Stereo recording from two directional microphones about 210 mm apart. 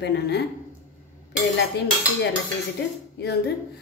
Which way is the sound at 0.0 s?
55° left (ahead or behind).